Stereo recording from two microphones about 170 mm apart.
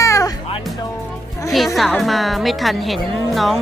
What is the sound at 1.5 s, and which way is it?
A woman's voice, centre (ahead or behind).